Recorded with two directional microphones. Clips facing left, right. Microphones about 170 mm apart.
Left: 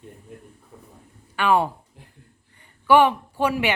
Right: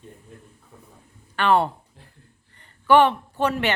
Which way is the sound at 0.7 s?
Centre (ahead or behind).